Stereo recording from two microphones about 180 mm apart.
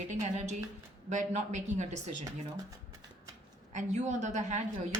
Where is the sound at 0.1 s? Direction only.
40° right (ahead or behind).